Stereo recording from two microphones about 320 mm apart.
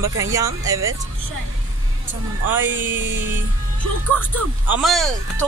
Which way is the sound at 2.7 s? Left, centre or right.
Right.